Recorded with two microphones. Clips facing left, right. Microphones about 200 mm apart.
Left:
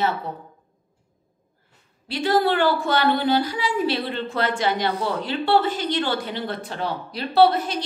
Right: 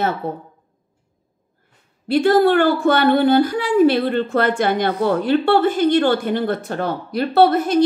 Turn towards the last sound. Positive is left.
turn(degrees=-50)  # may be behind; listen again after turning